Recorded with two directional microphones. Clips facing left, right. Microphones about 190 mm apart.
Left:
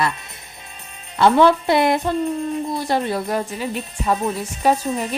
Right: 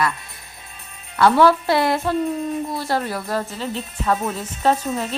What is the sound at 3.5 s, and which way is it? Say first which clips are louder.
Speech: left 2 dB; 15° left (ahead or behind).